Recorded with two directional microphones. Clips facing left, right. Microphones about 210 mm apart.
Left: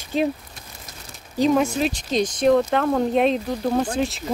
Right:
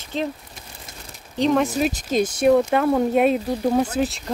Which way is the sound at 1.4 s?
Centre (ahead or behind).